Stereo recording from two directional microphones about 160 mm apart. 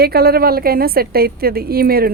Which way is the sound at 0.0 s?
75° right (ahead or behind).